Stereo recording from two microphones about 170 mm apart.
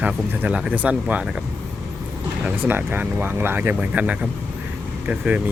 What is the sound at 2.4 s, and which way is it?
Speech, 10° right (ahead or behind).